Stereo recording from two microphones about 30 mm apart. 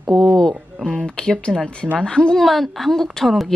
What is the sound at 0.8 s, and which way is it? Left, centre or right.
Speech, left.